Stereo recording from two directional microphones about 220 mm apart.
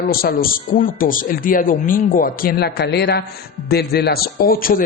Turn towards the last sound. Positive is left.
turn(degrees=40)  # may be behind; listen again after turning